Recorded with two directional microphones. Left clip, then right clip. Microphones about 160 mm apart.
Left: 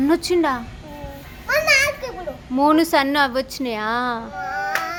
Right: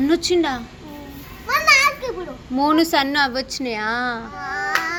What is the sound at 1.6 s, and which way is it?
Children playing, 20° left (ahead or behind).